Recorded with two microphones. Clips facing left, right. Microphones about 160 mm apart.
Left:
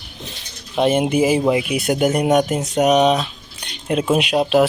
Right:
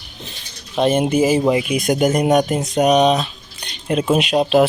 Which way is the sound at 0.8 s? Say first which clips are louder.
Even; 10° left (ahead or behind).